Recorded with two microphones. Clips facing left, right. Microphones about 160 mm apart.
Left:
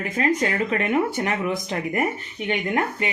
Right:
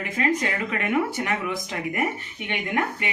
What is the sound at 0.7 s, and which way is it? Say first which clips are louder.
Speech: left 3 dB; 30° left (ahead or behind).